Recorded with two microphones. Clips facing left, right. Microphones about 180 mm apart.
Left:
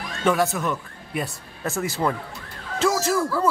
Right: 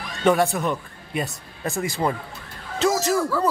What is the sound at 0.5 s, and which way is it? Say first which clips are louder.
Speech: right 1 dB; 35° right (ahead or behind).